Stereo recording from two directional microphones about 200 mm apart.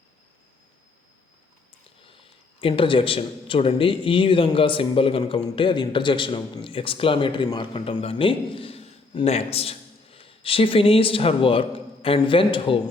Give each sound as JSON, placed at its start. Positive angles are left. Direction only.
{"t": 2.0, "sound": "speech", "side_deg": 25}